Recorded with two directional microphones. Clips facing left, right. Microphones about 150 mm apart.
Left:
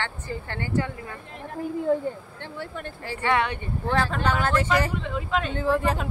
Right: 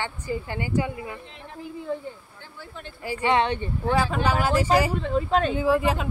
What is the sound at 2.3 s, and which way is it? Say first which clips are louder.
Speech: left 7 dB; 70° left (ahead or behind).